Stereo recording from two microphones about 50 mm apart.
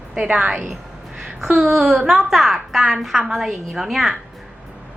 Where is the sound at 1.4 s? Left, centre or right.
Centre.